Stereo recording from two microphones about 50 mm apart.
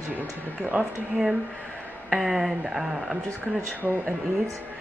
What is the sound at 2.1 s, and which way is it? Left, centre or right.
Speech, centre.